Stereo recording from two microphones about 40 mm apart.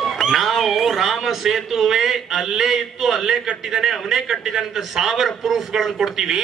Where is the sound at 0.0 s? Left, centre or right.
Centre.